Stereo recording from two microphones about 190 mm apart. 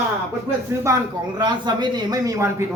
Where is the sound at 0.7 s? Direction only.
15° right (ahead or behind).